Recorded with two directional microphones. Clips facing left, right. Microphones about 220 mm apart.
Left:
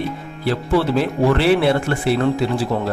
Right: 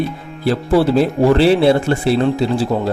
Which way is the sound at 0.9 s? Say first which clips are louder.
Right 4 dB; 30° right (ahead or behind).